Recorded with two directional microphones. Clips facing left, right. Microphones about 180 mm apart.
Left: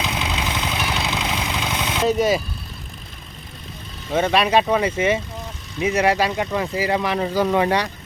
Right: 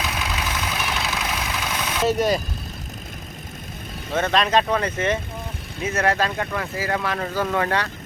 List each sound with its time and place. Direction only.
0.0 s vehicle: 20° left (ahead or behind)
2.0 s speech: centre (ahead or behind)
4.1 s speech: 10° left (ahead or behind)